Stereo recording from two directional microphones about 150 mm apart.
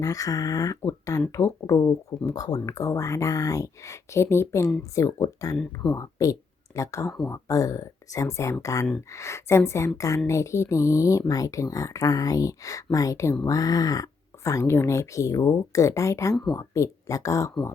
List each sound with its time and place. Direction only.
0.0 s speech: 20° left (ahead or behind)